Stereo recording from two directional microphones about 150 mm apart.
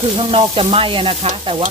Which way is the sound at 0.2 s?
40° right (ahead or behind).